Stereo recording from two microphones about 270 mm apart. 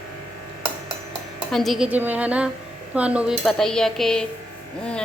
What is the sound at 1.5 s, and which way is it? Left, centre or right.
Speech, centre.